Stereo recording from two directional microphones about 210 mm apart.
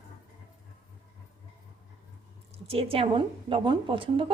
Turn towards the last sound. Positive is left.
turn(degrees=-25)  # may be behind; listen again after turning